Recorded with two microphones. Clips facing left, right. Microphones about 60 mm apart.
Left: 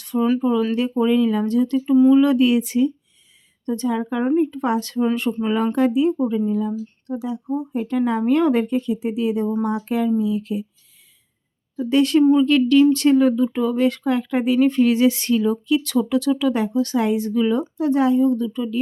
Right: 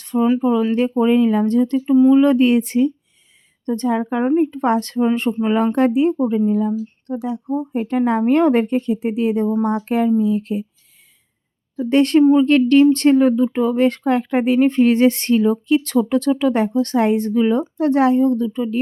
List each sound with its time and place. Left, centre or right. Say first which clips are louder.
0.2 s speech: right 2 dB; centre
2.0 s speech: right 1 dB; centre
2.2 s speech: right 2 dB; right
4.6 s speech: right 4 dB; right
5.3 s speech: right 3 dB; right
5.7 s speech: right 2 dB; right
6.1 s speech: right 3 dB; right
7.1 s speech: right 2 dB; right
11.9 s speech: right 3 dB; right
12.2 s speech: right 2 dB; right
12.5 s speech: right 2 dB; right
17.3 s speech: right 2 dB; right
17.6 s speech: right 3 dB; right